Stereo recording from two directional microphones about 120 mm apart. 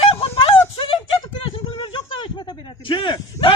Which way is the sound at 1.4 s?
45° left (ahead or behind).